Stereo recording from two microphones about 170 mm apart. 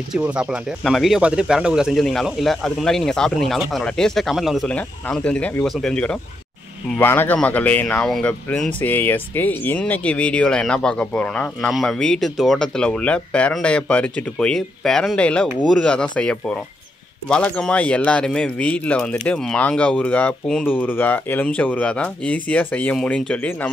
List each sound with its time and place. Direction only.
0.1 s speech: 5° right (ahead or behind)